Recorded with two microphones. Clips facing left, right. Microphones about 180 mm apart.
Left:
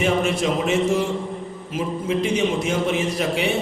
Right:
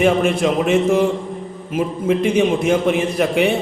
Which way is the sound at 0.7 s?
55° right (ahead or behind).